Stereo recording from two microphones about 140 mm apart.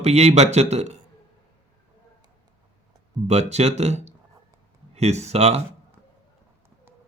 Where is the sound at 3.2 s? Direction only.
50° right (ahead or behind).